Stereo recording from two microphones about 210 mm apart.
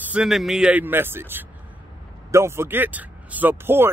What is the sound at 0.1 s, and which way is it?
Speech, centre (ahead or behind).